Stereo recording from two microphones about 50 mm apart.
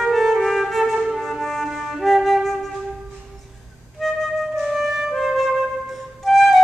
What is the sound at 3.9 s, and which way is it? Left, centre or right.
Flute, centre.